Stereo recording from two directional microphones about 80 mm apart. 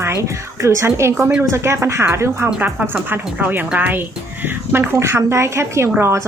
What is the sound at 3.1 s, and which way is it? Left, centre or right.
A woman's voice, right.